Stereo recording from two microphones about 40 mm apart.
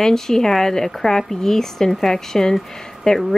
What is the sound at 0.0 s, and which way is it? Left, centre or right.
Speech, centre.